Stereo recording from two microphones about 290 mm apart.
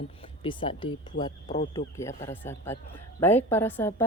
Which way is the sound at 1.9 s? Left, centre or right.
Centre.